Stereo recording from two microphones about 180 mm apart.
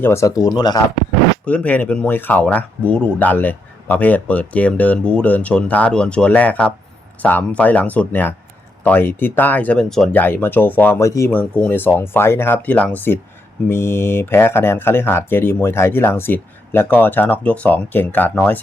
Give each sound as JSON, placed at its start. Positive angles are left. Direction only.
{"t": 0.0, "sound": "speech", "side_deg": 15}
{"t": 1.5, "sound": "speech", "side_deg": 10}